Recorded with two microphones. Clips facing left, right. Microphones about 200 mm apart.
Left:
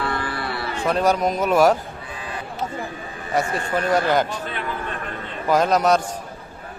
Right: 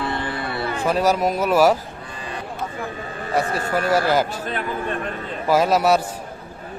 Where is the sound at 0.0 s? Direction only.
25° right (ahead or behind).